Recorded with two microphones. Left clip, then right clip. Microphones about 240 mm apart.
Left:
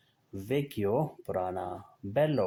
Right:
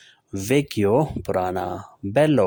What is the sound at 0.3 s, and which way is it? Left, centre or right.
Speech, right.